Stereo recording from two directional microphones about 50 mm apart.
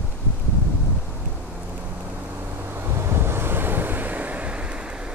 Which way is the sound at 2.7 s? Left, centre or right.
Right.